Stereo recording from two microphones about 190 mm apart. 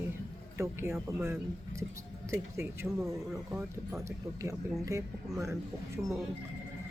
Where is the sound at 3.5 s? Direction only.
5° right (ahead or behind).